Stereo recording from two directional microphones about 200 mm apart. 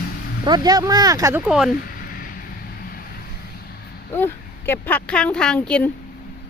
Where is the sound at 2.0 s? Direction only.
45° left (ahead or behind).